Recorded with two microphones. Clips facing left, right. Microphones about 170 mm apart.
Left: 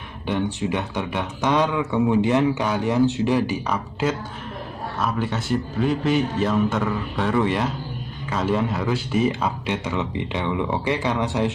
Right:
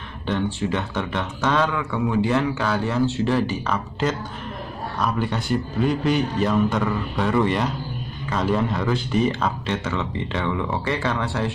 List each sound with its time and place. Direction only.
0.3 s a man's voice: 15° left (ahead or behind)